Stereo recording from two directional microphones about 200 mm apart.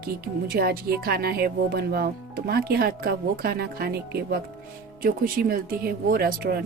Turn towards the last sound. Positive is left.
turn(degrees=-45)  # may be behind; listen again after turning